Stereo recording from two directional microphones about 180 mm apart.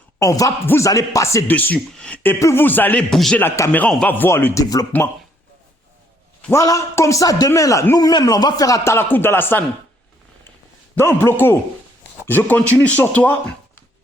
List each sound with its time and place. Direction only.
0.2 s a man's voice: 20° left (ahead or behind); by 3.4 s centre (ahead or behind)
3.4 s a man's voice: 15° left (ahead or behind)
6.4 s a man's voice: 15° left (ahead or behind)
10.9 s a man's voice: 15° left (ahead or behind)